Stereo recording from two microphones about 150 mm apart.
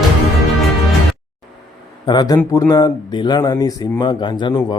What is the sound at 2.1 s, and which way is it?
Speech, 25° left (ahead or behind).